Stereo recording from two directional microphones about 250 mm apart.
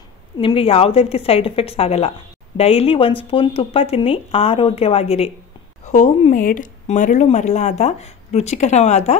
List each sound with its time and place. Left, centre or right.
0.4 s a woman's voice: left